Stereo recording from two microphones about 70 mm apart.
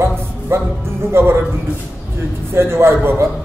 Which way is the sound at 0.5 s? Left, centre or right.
Right.